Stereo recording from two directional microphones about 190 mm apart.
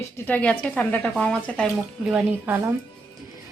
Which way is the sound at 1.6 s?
5° right (ahead or behind).